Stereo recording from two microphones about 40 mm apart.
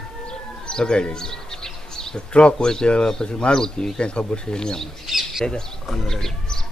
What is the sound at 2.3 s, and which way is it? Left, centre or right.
Speech, left.